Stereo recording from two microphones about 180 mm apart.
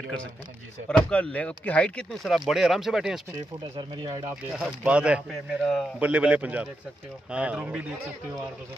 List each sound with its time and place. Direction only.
0.8 s speech: 5° left (ahead or behind)
3.7 s speech: 25° right (ahead or behind)
4.6 s speech: 5° right (ahead or behind)